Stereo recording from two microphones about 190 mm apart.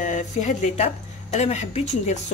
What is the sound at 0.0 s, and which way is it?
Speech, 40° left (ahead or behind).